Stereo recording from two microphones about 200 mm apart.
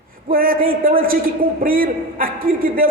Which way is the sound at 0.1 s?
45° right (ahead or behind).